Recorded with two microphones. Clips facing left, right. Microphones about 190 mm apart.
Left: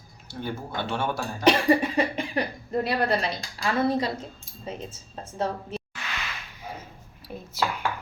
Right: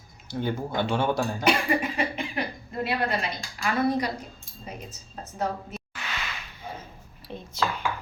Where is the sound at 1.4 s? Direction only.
35° left (ahead or behind).